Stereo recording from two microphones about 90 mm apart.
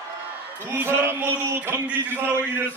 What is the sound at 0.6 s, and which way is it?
A man's voice, 20° right (ahead or behind).